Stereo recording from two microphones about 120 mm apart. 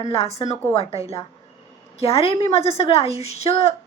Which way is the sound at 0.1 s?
60° left (ahead or behind).